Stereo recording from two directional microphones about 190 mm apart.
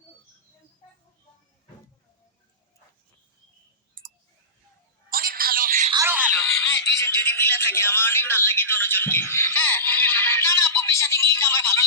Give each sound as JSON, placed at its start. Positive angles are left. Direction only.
{"t": 4.0, "sound": "clicking", "side_deg": -50}
{"t": 5.1, "sound": "telephone", "side_deg": -50}
{"t": 5.9, "sound": "a sound", "side_deg": -15}
{"t": 6.3, "sound": "music", "side_deg": 15}